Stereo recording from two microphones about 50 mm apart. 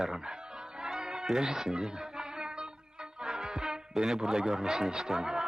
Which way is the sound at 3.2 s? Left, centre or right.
Centre.